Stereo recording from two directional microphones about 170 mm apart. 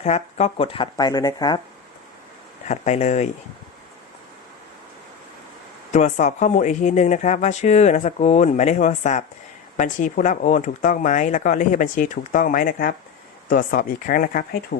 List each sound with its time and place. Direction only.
0.0 s speech: 40° left (ahead or behind); by 1.6 s 25° left (ahead or behind)
2.6 s speech: 40° left (ahead or behind)
5.9 s speech: 45° left (ahead or behind)